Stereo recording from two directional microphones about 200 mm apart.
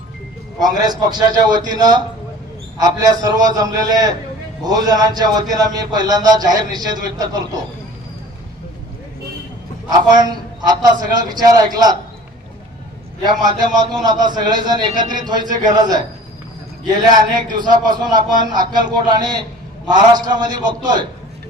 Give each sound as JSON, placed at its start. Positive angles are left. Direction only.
{"t": 0.6, "sound": "a man's voice", "side_deg": -20}
{"t": 9.9, "sound": "a man's voice", "side_deg": -20}
{"t": 13.9, "sound": "a man's voice", "side_deg": -20}